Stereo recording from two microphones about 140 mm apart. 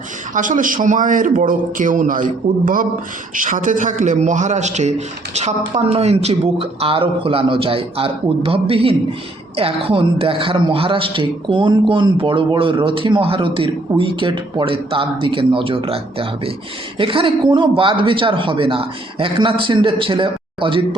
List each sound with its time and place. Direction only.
0.3 s a man's voice: 70° right (ahead or behind); by 20.8 s 40° right (ahead or behind)